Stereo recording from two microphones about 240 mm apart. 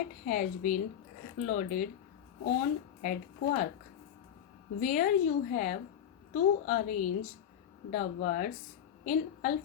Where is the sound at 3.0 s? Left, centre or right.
Left.